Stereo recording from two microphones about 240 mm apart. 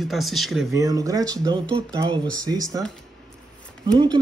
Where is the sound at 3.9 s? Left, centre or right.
Centre.